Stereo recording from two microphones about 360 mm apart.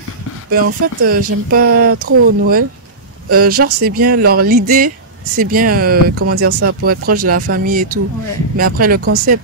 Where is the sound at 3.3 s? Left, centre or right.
Right.